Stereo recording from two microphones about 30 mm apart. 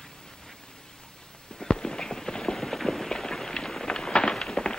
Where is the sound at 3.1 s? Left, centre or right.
Centre.